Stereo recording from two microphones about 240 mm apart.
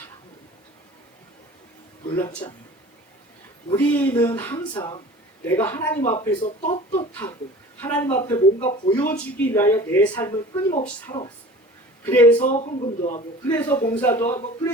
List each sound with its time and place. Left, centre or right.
2.1 s speech: centre
3.7 s speech: centre
6.0 s speech: left
7.8 s speech: centre
10.5 s speech: left
10.8 s speech: centre
12.4 s speech: left
13.5 s speech: centre